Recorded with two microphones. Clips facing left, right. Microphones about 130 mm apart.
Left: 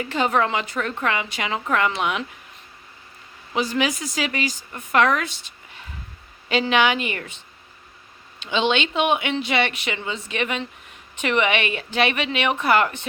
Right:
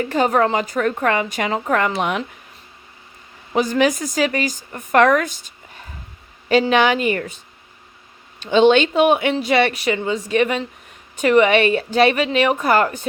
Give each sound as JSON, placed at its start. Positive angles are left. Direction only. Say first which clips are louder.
{"t": 0.0, "sound": "a woman's voice", "louder": "right 4 dB", "side_deg": -40}
{"t": 3.5, "sound": "a woman's voice", "louder": "right 6 dB", "side_deg": -50}
{"t": 8.4, "sound": "a woman's voice", "louder": "right 9 dB", "side_deg": -45}